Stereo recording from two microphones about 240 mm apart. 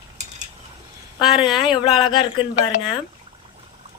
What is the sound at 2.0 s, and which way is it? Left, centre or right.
Speech, centre.